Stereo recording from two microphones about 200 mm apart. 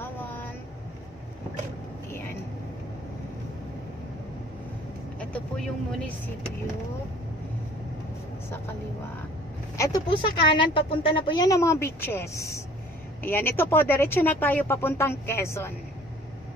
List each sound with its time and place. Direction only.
0.0 s vehicle: 10° left (ahead or behind)
5.3 s speech: 5° left (ahead or behind)
9.8 s speech: 20° left (ahead or behind)